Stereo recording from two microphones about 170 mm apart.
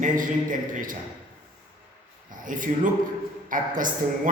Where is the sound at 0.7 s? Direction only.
50° right (ahead or behind).